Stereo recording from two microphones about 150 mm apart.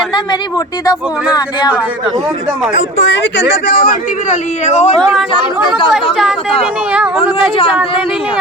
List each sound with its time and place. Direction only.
3.7 s a man's voice: 90° left
4.3 s a man's voice: 50° left (ahead or behind)
5.3 s speech: 35° left (ahead or behind)
5.9 s speech: centre (ahead or behind)